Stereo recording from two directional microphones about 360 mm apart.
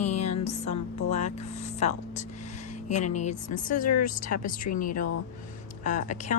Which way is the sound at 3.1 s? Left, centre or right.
Centre.